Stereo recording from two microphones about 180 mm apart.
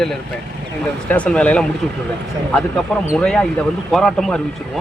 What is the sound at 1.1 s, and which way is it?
Speech, 5° left (ahead or behind).